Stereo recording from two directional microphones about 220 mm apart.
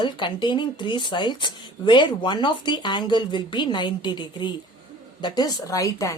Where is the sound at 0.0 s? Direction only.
20° left (ahead or behind).